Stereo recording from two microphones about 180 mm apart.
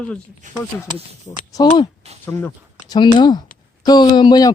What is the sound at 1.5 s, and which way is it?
Speech, 25° left (ahead or behind).